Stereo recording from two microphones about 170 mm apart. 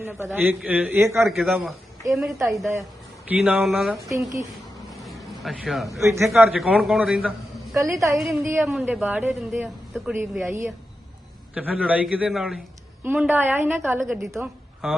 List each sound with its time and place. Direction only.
0.0 s speech: 15° right (ahead or behind)
1.3 s a man's voice: centre (ahead or behind)
5.0 s vehicle: centre (ahead or behind)
6.2 s a man's voice: centre (ahead or behind)
7.8 s speech: 20° right (ahead or behind)
8.2 s a man's voice: centre (ahead or behind)
8.4 s speech: 15° right (ahead or behind)
14.3 s a woman's voice: centre (ahead or behind)